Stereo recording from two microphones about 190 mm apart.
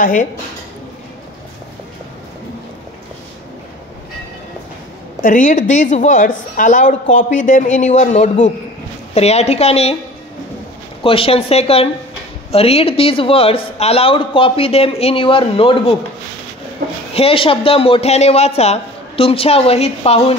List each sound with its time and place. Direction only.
0.0 s a woman's voice: 45° left (ahead or behind)
5.2 s a woman's voice: 45° left (ahead or behind)
11.0 s a woman's voice: 30° left (ahead or behind)
17.1 s a woman's voice: 30° left (ahead or behind)